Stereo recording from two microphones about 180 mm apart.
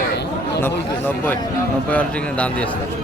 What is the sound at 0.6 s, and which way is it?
A man's voice, 10° left (ahead or behind).